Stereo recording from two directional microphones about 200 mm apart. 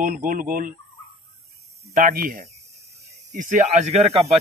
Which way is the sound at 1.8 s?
40° right (ahead or behind).